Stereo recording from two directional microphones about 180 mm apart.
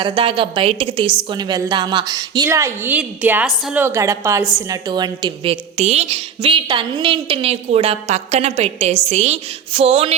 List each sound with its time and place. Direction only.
0.2 s a woman's voice: 30° right (ahead or behind)